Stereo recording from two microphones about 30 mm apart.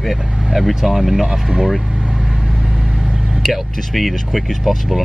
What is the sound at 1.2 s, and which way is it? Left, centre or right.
Speech, right.